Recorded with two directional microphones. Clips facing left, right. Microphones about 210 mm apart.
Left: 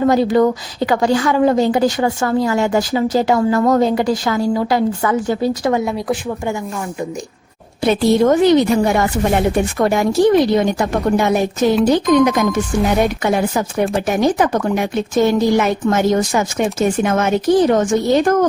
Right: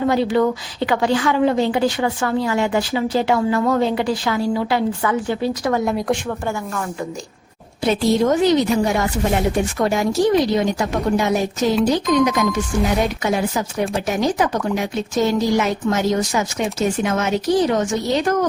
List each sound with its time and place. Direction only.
0.1 s a woman's voice: 45° left (ahead or behind)
5.8 s speech: centre (ahead or behind)
7.9 s speech: 60° left (ahead or behind)